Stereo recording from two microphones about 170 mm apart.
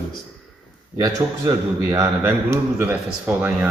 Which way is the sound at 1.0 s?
25° right (ahead or behind).